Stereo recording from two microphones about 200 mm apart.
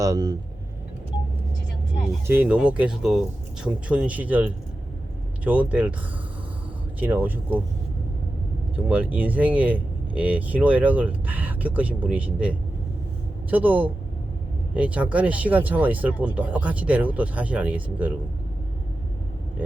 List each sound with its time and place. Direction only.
0.0 s speech: 15° right (ahead or behind)
2.2 s speech: 10° right (ahead or behind)
7.0 s speech: 10° right (ahead or behind)
8.7 s speech: 10° right (ahead or behind)